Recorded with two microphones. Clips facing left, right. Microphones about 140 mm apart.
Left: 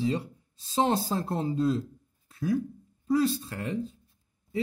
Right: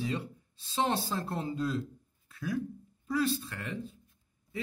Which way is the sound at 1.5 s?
25° left (ahead or behind).